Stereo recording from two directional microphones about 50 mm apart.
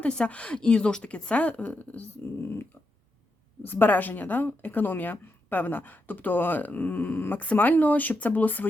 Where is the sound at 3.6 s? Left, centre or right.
Left.